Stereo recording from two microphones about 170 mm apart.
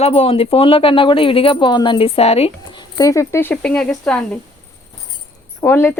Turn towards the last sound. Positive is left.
turn(degrees=15)  # may be behind; listen again after turning